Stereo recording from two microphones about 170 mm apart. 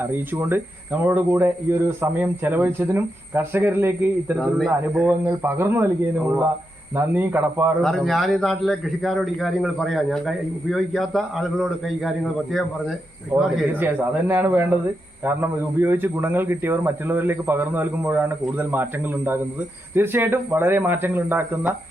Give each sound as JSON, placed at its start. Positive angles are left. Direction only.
{"t": 0.0, "sound": "a man's voice", "side_deg": -15}
{"t": 4.4, "sound": "a man's voice", "side_deg": 0}
{"t": 7.8, "sound": "a man's voice", "side_deg": 0}
{"t": 13.3, "sound": "a man's voice", "side_deg": 0}
{"t": 13.7, "sound": "a man's voice", "side_deg": -10}